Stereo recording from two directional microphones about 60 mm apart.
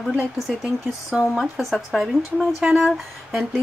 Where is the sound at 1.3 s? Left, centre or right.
Centre.